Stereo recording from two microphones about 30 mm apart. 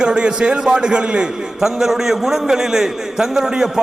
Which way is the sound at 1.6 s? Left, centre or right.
Centre.